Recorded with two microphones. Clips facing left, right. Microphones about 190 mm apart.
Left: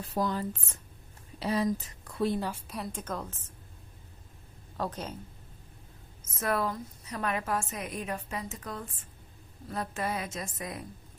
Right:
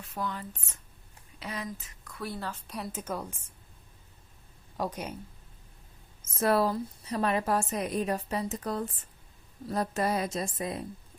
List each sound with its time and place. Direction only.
0.0 s a woman's voice: 35° left (ahead or behind); by 2.6 s 15° left (ahead or behind)
2.6 s a woman's voice: centre (ahead or behind)
4.8 s a woman's voice: 10° right (ahead or behind)
6.3 s a woman's voice: 30° right (ahead or behind)